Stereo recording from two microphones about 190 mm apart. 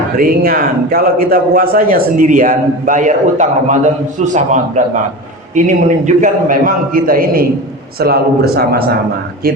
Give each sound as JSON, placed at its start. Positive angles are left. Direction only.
{"t": 0.2, "sound": "a man's voice", "side_deg": -50}